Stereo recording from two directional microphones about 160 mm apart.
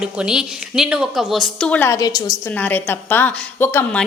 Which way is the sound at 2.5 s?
10° left (ahead or behind).